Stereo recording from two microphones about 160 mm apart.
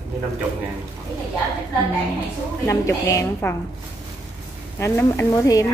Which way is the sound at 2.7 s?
20° left (ahead or behind).